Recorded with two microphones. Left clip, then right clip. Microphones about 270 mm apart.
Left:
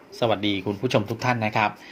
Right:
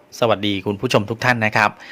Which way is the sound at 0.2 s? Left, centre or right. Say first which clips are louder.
Right 5 dB; right.